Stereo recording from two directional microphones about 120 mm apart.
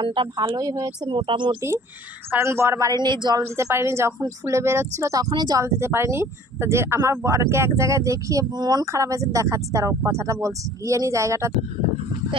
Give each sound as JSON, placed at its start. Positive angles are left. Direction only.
{"t": 0.0, "sound": "speech", "side_deg": -40}
{"t": 2.3, "sound": "speech", "side_deg": -20}
{"t": 3.5, "sound": "speech", "side_deg": -20}
{"t": 5.6, "sound": "speech", "side_deg": -20}